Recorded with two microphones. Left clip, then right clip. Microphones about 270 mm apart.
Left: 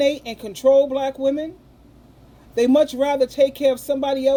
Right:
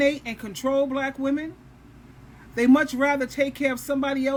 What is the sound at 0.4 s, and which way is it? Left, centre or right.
Speech, centre.